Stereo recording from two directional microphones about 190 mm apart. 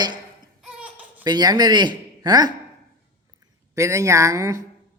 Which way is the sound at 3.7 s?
15° right (ahead or behind).